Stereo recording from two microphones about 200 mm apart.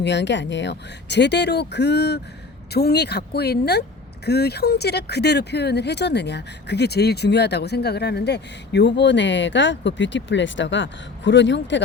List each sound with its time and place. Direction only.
0.0 s speech: 60° left (ahead or behind)